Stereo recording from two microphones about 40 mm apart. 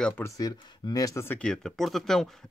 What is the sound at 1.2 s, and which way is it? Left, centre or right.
Speech, left.